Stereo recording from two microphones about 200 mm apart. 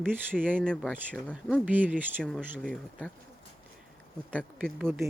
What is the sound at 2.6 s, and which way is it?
Speech, 5° left (ahead or behind).